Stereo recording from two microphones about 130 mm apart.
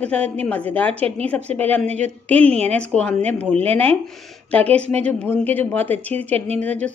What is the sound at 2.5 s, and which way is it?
Speech, 55° right (ahead or behind).